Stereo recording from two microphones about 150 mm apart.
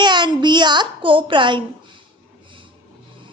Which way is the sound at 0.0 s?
30° right (ahead or behind).